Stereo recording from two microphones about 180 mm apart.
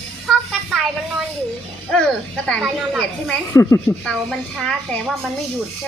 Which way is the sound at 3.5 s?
15° left (ahead or behind).